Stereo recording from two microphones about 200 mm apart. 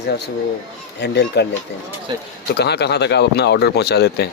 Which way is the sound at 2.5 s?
55° left (ahead or behind).